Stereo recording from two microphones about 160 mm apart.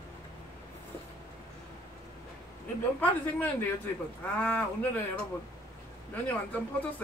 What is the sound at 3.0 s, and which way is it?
A woman's voice, 10° left (ahead or behind).